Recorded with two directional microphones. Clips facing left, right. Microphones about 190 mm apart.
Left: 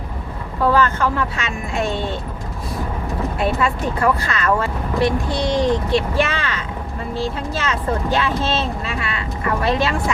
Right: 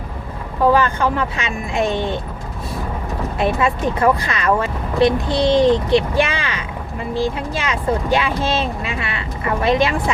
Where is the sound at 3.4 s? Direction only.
20° right (ahead or behind).